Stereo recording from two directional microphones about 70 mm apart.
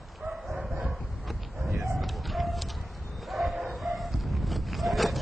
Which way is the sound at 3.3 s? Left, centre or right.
Centre.